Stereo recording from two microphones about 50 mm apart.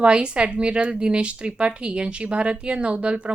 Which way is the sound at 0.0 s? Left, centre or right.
Right.